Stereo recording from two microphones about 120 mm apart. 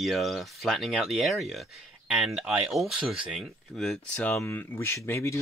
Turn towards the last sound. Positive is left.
turn(degrees=20)  # may be behind; listen again after turning